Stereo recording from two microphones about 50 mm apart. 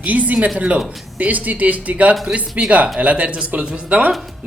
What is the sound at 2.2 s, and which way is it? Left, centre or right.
Speech, centre.